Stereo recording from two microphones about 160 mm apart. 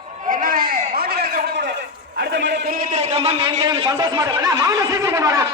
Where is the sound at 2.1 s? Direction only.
90° right.